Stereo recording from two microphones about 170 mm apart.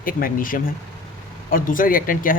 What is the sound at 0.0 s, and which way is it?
Speech, 55° left (ahead or behind).